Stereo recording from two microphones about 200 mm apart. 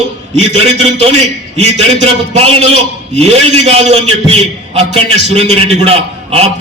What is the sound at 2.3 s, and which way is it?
A man's voice, 30° right (ahead or behind).